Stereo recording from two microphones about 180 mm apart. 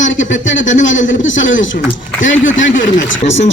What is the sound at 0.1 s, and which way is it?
A man's voice, 90° left.